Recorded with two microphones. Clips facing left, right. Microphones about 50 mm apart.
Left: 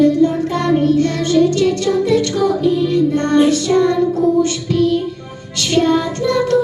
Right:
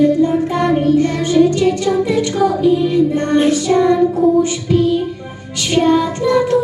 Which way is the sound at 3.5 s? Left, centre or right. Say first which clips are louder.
Right 1 dB; centre.